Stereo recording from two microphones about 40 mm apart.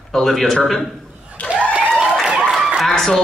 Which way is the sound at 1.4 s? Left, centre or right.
Left.